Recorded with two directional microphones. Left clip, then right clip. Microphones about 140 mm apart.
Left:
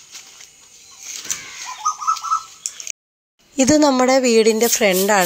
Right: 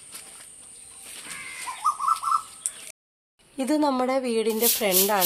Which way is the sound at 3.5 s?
40° left (ahead or behind).